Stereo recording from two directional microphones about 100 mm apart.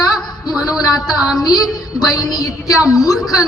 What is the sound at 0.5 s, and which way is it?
Speech, centre (ahead or behind).